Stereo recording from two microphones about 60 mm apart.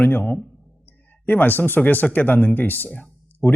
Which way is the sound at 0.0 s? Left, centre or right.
Left.